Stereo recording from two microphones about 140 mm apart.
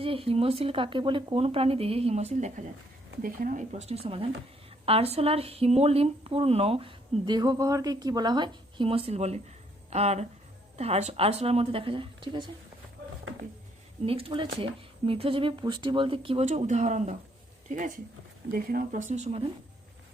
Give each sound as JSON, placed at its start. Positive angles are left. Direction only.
{"t": 0.0, "sound": "speech", "side_deg": -40}
{"t": 3.2, "sound": "speech", "side_deg": -75}
{"t": 14.0, "sound": "speech", "side_deg": -45}
{"t": 18.5, "sound": "speech", "side_deg": -80}